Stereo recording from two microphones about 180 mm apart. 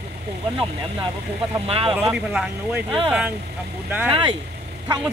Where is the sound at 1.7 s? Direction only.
30° right (ahead or behind).